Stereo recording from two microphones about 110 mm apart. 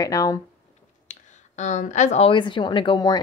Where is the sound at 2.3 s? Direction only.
50° left (ahead or behind).